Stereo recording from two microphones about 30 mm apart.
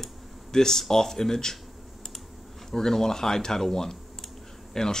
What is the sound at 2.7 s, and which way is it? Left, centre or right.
Speech, centre.